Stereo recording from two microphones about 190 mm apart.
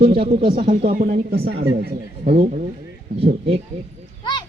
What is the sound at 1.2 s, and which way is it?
Speech, 55° right (ahead or behind).